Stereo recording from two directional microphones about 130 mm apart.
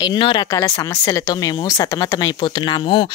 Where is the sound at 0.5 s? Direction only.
25° left (ahead or behind).